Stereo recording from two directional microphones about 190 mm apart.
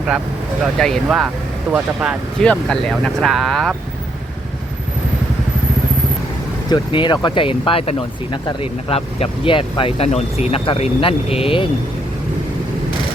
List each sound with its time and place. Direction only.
0.8 s speech: centre (ahead or behind)
6.7 s speech: 25° left (ahead or behind)